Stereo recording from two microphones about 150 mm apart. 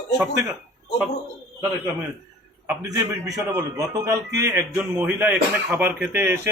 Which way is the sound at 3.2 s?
25° right (ahead or behind).